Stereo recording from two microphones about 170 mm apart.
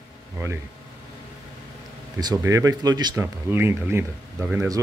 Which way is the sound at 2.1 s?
20° right (ahead or behind).